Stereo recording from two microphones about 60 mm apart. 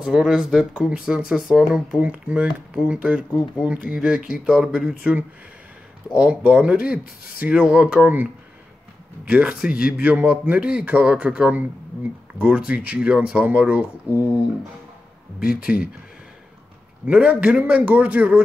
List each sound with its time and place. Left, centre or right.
0.0 s speech: centre
0.7 s speech: right
1.0 s speech: centre
15.4 s speech: centre
17.0 s speech: right